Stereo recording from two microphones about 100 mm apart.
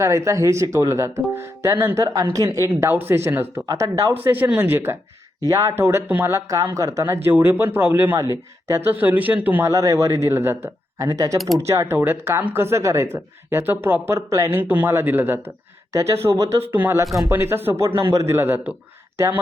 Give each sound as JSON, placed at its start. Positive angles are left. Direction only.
{"t": 0.0, "sound": "speech", "side_deg": -30}
{"t": 2.3, "sound": "a man's voice", "side_deg": -35}
{"t": 2.8, "sound": "speech", "side_deg": -20}
{"t": 3.7, "sound": "a man's voice", "side_deg": -35}
{"t": 4.1, "sound": "speech", "side_deg": -20}
{"t": 6.5, "sound": "a man's voice", "side_deg": -30}
{"t": 8.8, "sound": "a man's voice", "side_deg": -20}
{"t": 9.6, "sound": "a man's voice", "side_deg": -35}
{"t": 11.1, "sound": "a man's voice", "side_deg": -35}
{"t": 14.6, "sound": "speech", "side_deg": -15}
{"t": 15.9, "sound": "speech", "side_deg": -30}